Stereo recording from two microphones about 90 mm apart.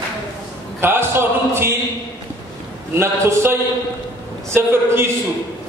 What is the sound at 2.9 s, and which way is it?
A man's voice, 30° right (ahead or behind).